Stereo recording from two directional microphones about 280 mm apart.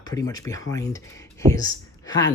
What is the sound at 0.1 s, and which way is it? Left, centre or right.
Speech, centre.